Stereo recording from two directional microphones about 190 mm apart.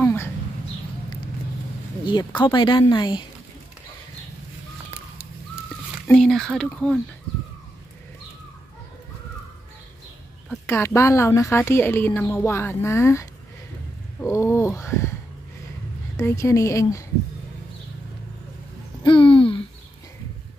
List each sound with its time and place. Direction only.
0.0 s a sound: 10° left (ahead or behind)
2.0 s speech: 25° left (ahead or behind)
6.0 s speech: centre (ahead or behind)
10.7 s a woman's voice: 15° left (ahead or behind)
16.2 s a woman's voice: 15° left (ahead or behind)
19.0 s a sound: 25° left (ahead or behind)